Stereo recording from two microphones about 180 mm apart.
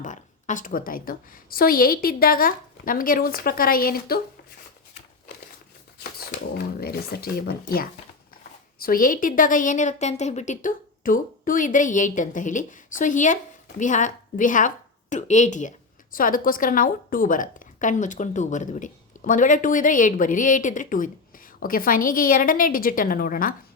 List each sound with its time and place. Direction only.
0.0 s a woman's voice: 45° left (ahead or behind)
6.0 s a sound: 60° left (ahead or behind)
8.8 s a woman's voice: 50° left (ahead or behind)